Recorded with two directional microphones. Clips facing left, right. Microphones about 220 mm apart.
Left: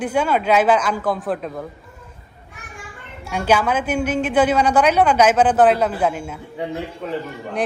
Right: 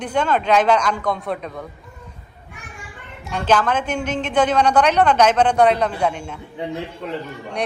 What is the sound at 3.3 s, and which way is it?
A woman's voice, 10° left (ahead or behind).